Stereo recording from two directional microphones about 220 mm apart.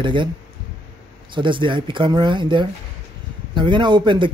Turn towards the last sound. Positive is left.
turn(degrees=-20)  # may be behind; listen again after turning